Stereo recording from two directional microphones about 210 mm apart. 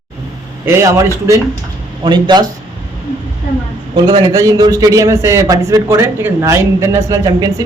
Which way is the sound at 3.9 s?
20° right (ahead or behind).